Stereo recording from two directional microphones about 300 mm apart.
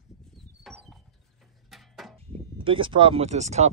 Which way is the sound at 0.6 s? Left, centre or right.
Centre.